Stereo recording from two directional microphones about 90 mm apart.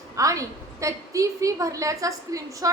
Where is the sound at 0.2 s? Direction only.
40° right (ahead or behind).